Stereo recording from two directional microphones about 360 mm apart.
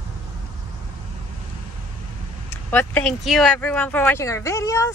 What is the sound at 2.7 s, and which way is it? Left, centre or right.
Speech, centre.